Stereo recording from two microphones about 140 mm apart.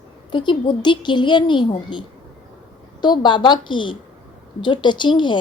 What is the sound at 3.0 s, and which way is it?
A woman's voice, 30° left (ahead or behind).